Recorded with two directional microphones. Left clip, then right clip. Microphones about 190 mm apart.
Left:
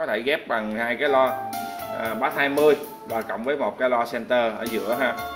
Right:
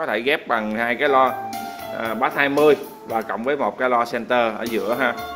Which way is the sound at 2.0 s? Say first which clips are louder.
Right 3 dB; 40° right (ahead or behind).